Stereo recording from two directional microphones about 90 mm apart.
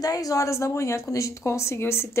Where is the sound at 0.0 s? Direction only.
40° left (ahead or behind).